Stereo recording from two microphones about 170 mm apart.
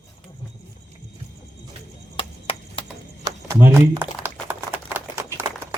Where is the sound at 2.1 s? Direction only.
30° left (ahead or behind).